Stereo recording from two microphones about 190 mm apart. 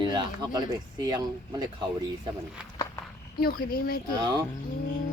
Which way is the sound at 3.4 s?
50° left (ahead or behind).